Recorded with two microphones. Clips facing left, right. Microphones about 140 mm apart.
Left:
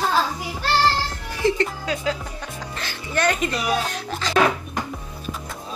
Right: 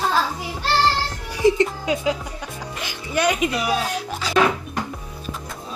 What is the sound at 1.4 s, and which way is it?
Speech, 15° right (ahead or behind).